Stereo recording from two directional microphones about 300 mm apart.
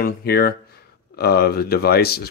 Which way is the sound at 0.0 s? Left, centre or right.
Left.